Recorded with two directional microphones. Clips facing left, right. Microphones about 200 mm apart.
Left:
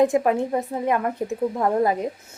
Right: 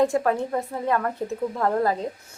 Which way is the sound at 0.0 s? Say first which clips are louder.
Left 2 dB; 15° left (ahead or behind).